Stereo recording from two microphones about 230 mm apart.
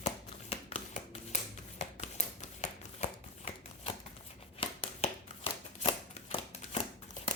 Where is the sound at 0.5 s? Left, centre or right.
Left.